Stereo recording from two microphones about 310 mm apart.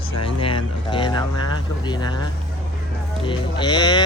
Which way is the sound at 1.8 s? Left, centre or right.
Centre.